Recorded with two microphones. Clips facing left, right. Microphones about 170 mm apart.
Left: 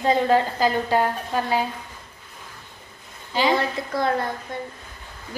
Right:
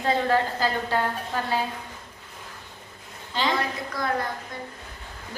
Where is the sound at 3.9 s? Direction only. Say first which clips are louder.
Left 7 dB; 25° left (ahead or behind).